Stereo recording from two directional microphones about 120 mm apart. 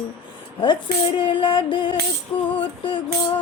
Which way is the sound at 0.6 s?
40° left (ahead or behind).